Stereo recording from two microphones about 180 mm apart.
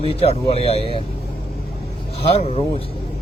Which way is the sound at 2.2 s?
30° left (ahead or behind).